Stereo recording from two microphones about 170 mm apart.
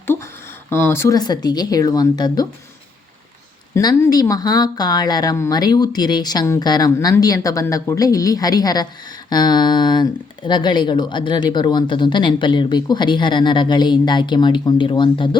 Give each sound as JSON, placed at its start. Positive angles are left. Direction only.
{"t": 0.7, "sound": "speech", "side_deg": 15}
{"t": 3.8, "sound": "speech", "side_deg": 20}